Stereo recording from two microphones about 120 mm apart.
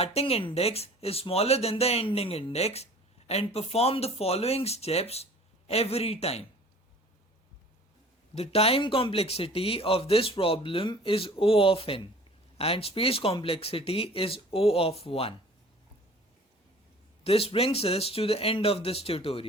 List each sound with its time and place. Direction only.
0.0 s speech: 55° left (ahead or behind)
8.4 s speech: 55° left (ahead or behind)
17.2 s speech: 55° left (ahead or behind)